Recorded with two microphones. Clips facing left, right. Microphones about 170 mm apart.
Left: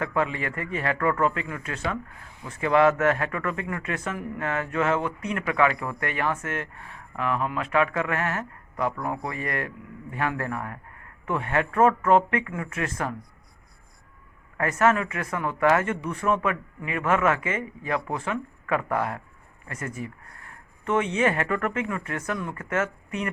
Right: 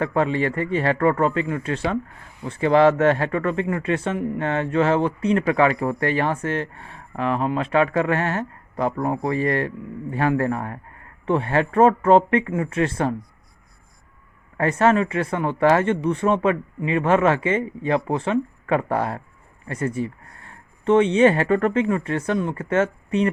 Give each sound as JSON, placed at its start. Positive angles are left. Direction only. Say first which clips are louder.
{"t": 0.0, "sound": "speech", "louder": "right 6 dB", "side_deg": -30}
{"t": 14.6, "sound": "speech", "louder": "right 4 dB", "side_deg": -30}